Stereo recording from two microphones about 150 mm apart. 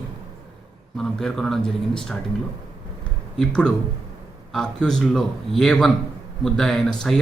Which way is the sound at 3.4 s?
5° left (ahead or behind).